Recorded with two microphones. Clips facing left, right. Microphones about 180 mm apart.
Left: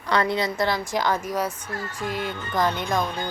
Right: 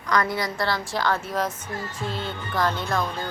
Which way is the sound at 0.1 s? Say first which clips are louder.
Left 2 dB; 25° left (ahead or behind).